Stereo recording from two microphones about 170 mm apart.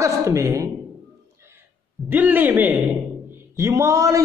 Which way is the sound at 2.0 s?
10° right (ahead or behind).